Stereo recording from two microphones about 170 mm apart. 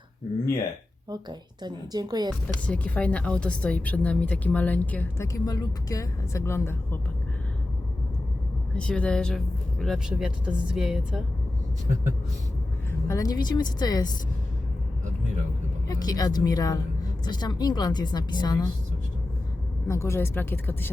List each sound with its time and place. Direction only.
1.1 s a woman's voice: 25° right (ahead or behind)
2.6 s speech: 10° left (ahead or behind)
8.7 s speech: 5° left (ahead or behind)
13.1 s a woman's voice: 20° left (ahead or behind)
15.9 s a woman's voice: 20° left (ahead or behind)
19.9 s speech: 15° left (ahead or behind)